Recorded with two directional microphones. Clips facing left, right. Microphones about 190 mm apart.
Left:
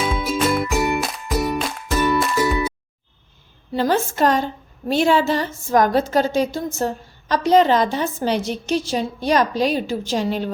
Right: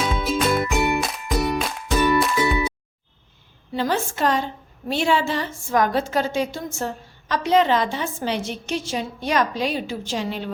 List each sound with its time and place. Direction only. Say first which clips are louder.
0.0 s music: left 1 dB; 5° left (ahead or behind)
3.7 s a woman's voice: left 4 dB; 40° left (ahead or behind)